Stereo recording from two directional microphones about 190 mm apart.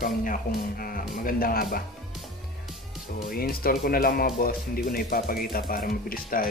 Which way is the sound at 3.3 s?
50° left (ahead or behind).